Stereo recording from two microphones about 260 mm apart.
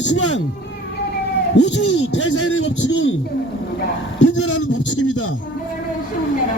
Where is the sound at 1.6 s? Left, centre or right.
Left.